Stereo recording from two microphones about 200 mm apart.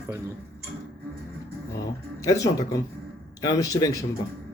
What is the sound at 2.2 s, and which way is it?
Speech, 15° left (ahead or behind).